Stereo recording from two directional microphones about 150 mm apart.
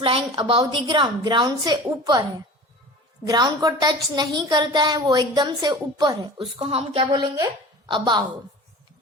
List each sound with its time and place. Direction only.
0.0 s a woman's voice: 35° right (ahead or behind)
3.2 s a woman's voice: 25° right (ahead or behind)